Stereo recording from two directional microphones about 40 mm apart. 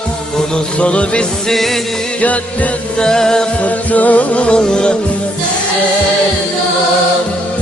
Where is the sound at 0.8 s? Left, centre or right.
Left.